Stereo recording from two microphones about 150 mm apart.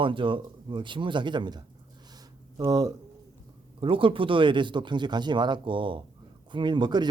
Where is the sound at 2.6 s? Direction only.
25° right (ahead or behind).